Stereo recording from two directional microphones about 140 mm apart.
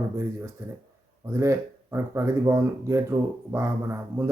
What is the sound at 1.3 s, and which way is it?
Speech, 20° right (ahead or behind).